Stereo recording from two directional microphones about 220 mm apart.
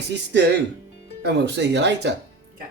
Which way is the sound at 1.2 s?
50° right (ahead or behind).